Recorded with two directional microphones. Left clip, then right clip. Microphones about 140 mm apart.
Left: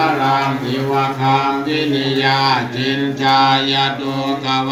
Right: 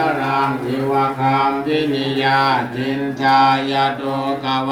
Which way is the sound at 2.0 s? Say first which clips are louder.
Left 2 dB; 45° right (ahead or behind).